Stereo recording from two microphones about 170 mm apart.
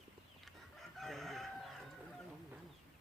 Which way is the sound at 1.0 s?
Centre (ahead or behind).